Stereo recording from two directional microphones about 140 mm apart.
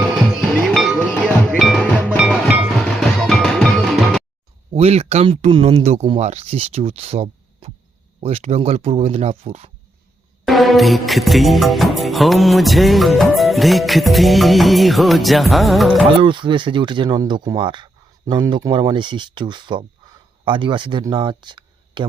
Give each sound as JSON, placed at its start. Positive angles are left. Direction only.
{"t": 0.6, "sound": "music", "side_deg": 0}
{"t": 4.7, "sound": "speech", "side_deg": -45}
{"t": 10.4, "sound": "music", "side_deg": 0}
{"t": 16.1, "sound": "speech", "side_deg": -35}